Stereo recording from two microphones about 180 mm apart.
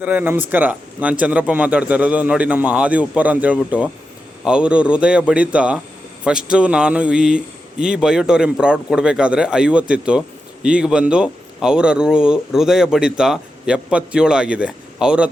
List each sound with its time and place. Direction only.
0.0 s a man's voice: 10° right (ahead or behind)